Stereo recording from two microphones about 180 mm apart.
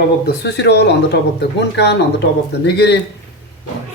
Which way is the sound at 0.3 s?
65° left (ahead or behind).